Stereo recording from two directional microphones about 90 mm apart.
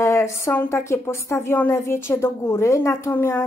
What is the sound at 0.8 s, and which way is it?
Speech, 30° left (ahead or behind).